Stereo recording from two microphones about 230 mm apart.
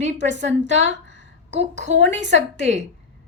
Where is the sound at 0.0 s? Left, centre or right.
Right.